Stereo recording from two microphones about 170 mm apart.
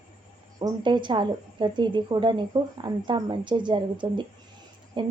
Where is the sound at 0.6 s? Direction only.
25° right (ahead or behind).